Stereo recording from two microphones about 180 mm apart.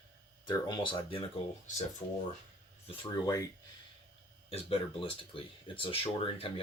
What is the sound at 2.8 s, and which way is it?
Speech, 30° left (ahead or behind).